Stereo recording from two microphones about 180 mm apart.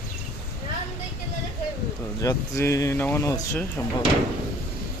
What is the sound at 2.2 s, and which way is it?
Speech, 15° left (ahead or behind).